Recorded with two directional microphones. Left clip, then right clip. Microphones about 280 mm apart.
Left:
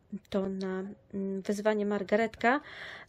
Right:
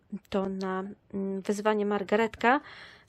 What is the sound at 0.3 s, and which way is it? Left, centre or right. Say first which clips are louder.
Speech: right 2 dB; centre.